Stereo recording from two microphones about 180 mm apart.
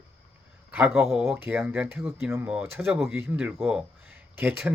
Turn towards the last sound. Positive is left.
turn(degrees=-10)  # may be behind; listen again after turning